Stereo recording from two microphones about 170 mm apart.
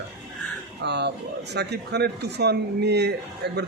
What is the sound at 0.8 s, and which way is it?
A man's voice, 80° right.